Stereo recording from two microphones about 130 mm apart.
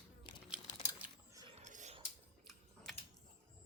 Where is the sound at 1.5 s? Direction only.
70° right (ahead or behind).